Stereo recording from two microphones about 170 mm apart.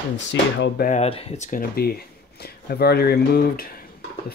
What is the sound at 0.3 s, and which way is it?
Speech, 90° left.